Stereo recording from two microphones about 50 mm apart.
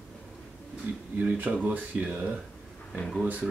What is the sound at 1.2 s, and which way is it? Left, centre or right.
Speech, right.